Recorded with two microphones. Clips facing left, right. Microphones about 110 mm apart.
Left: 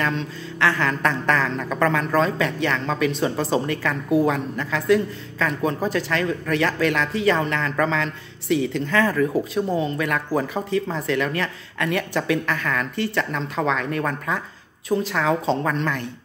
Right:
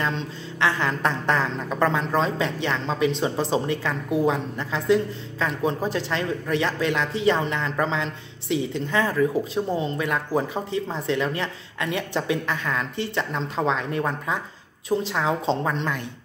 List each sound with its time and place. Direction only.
0.0 s speech: 25° right (ahead or behind)